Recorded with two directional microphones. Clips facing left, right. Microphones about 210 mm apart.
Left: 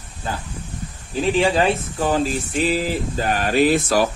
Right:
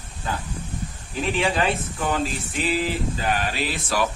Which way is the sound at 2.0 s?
40° left (ahead or behind).